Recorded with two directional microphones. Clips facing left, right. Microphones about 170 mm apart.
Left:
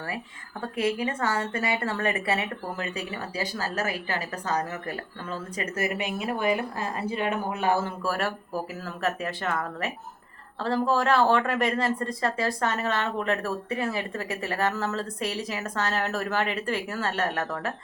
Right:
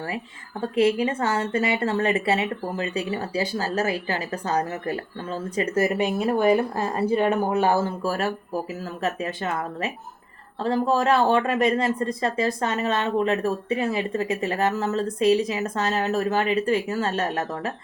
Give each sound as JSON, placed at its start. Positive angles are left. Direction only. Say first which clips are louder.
{"t": 0.6, "sound": "speech", "louder": "right 6 dB", "side_deg": -25}